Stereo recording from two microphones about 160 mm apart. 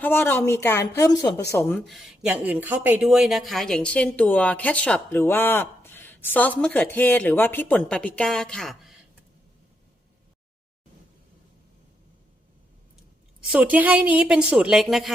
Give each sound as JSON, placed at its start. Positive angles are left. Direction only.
{"t": 0.0, "sound": "speech", "side_deg": 10}
{"t": 1.8, "sound": "speech", "side_deg": 0}
{"t": 13.5, "sound": "a woman's voice", "side_deg": -10}